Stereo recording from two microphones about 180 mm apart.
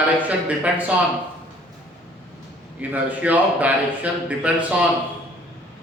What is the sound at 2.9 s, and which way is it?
Speech, 10° right (ahead or behind).